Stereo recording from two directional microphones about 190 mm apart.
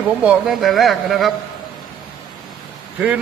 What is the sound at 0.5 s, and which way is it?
Speech, centre (ahead or behind).